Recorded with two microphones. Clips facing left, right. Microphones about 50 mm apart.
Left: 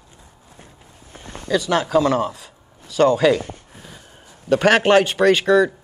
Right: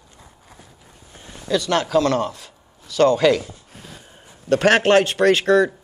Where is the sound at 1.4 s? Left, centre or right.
Centre.